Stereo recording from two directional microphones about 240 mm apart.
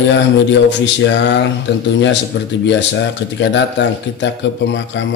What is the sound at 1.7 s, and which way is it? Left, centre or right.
Speech, left.